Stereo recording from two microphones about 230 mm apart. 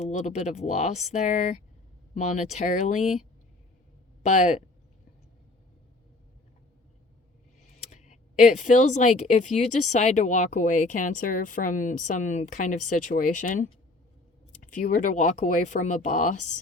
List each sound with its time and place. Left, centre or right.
0.0 s speech: left
4.2 s speech: left
7.6 s speech: left
14.8 s speech: left